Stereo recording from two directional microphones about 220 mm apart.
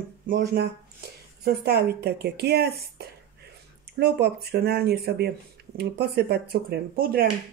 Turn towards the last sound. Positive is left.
turn(degrees=-45)  # may be behind; listen again after turning